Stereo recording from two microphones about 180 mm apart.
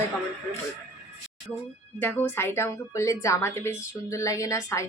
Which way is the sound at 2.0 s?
10° left (ahead or behind).